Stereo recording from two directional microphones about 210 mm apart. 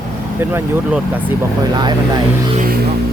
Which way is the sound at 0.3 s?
10° right (ahead or behind).